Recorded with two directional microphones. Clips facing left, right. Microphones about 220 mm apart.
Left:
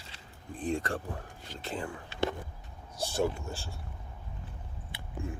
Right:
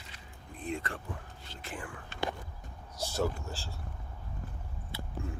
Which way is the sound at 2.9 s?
30° left (ahead or behind).